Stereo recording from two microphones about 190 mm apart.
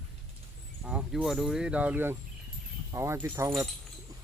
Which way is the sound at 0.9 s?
5° right (ahead or behind).